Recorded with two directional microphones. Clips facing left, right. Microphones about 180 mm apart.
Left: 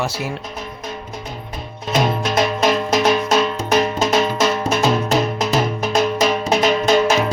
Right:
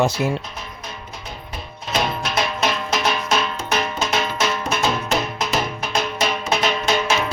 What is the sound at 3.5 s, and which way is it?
Music, 40° left (ahead or behind).